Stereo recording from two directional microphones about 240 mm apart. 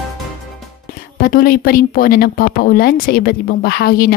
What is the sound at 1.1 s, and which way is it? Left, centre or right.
Speech, left.